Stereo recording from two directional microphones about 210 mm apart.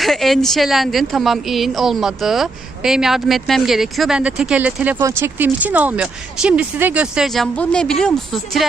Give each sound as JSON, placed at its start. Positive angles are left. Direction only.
{"t": 0.0, "sound": "speech", "side_deg": 0}